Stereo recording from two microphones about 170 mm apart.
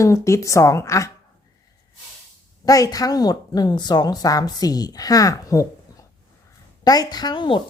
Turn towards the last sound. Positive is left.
turn(degrees=30)  # may be behind; listen again after turning